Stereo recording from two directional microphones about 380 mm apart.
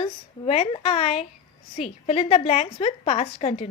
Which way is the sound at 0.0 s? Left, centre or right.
Centre.